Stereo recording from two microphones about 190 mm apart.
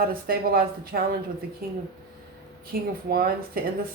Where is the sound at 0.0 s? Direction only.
50° right (ahead or behind).